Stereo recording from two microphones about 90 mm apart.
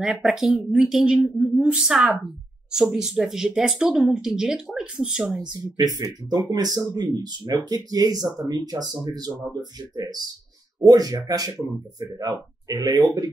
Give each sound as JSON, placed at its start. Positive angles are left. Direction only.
{"t": 0.0, "sound": "speech", "side_deg": -5}
{"t": 5.4, "sound": "speech", "side_deg": -50}